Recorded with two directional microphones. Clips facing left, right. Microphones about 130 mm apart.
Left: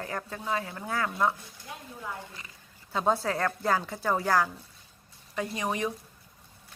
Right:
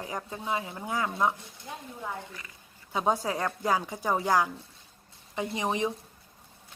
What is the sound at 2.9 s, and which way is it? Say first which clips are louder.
A woman's voice: left 1 dB; 15° right (ahead or behind).